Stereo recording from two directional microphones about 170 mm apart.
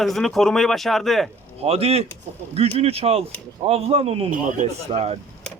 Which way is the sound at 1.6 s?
35° right (ahead or behind).